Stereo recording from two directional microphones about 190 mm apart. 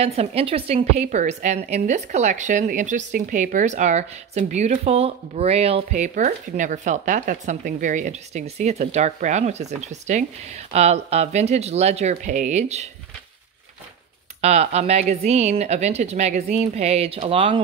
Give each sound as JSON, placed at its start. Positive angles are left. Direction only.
{"t": 0.0, "sound": "a woman's voice", "side_deg": -30}
{"t": 14.4, "sound": "a woman's voice", "side_deg": -35}